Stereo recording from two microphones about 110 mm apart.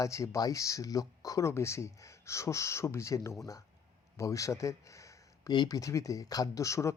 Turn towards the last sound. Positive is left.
turn(degrees=30)  # may be behind; listen again after turning